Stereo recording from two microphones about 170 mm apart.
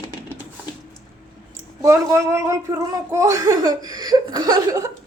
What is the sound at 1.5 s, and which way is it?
Speech, 15° right (ahead or behind).